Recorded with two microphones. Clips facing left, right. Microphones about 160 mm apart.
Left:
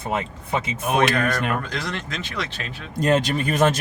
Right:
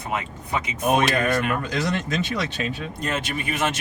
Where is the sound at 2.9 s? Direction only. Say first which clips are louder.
Left 12 dB; 40° left (ahead or behind).